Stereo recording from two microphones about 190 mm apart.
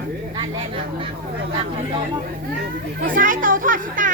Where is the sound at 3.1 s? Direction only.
45° right (ahead or behind).